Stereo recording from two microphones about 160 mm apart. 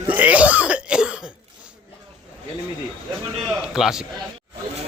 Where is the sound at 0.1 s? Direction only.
10° right (ahead or behind).